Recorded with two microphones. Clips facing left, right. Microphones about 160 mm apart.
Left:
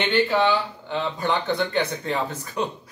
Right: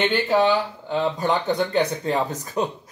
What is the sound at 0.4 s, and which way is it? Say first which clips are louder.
Speech: right 2 dB; 40° right (ahead or behind).